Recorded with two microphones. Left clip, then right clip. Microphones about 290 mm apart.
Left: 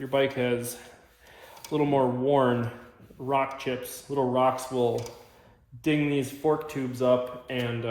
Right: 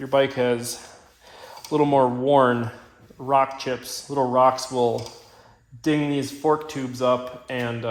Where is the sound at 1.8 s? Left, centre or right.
Right.